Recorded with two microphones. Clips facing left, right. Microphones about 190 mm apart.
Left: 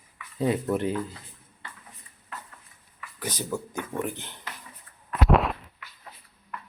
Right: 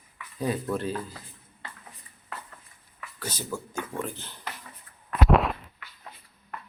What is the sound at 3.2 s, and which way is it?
Speech, 15° left (ahead or behind).